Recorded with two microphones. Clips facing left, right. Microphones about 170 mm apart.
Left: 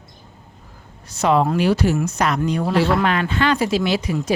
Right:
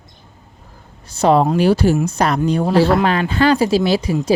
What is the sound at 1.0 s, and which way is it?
Speech, 30° right (ahead or behind).